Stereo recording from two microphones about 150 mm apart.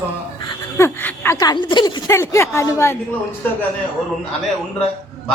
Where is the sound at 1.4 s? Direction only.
30° left (ahead or behind).